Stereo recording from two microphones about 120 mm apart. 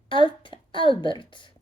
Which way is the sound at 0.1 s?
45° left (ahead or behind).